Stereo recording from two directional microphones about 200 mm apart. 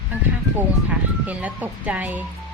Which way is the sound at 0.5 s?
5° right (ahead or behind).